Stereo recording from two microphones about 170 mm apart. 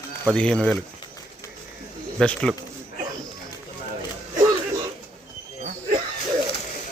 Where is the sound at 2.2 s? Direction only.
5° left (ahead or behind).